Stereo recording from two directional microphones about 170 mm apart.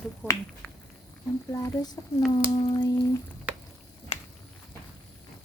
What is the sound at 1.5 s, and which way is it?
Speech, 25° left (ahead or behind).